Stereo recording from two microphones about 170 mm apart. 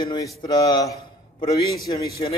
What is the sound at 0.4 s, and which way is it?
A man's voice, 25° left (ahead or behind).